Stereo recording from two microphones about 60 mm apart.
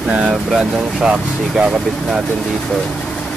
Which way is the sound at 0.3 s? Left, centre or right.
Centre.